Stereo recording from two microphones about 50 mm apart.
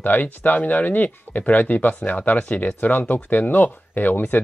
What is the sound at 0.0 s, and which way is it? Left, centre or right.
Speech, left.